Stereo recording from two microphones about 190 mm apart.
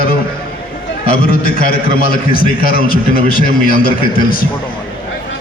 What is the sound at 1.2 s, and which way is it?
A man's voice, 50° left (ahead or behind).